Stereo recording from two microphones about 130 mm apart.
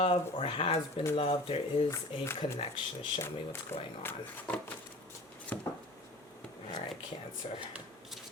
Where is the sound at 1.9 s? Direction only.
20° left (ahead or behind).